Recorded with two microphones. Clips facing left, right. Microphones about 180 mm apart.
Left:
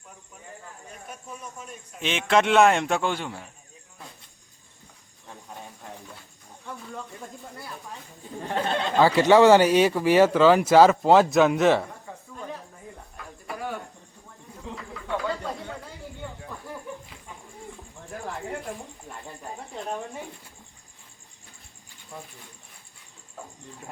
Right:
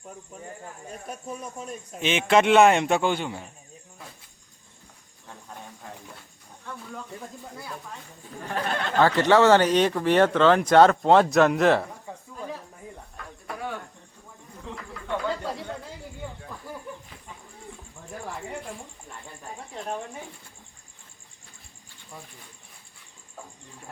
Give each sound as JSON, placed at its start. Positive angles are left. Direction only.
{"t": 1.0, "sound": "speech", "side_deg": -35}
{"t": 2.0, "sound": "speech", "side_deg": 0}
{"t": 8.4, "sound": "speech", "side_deg": 25}
{"t": 9.0, "sound": "speech", "side_deg": 10}
{"t": 13.1, "sound": "cricket", "side_deg": 0}
{"t": 16.2, "sound": "a sound", "side_deg": 0}